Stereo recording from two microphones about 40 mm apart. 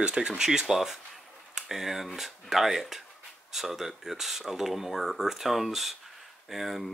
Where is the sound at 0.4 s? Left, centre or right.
Centre.